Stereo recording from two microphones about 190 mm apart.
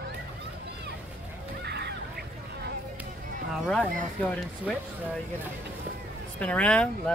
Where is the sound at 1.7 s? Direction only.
60° right (ahead or behind).